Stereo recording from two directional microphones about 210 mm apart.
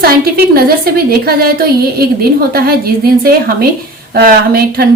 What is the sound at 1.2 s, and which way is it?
A woman's voice, 45° right (ahead or behind).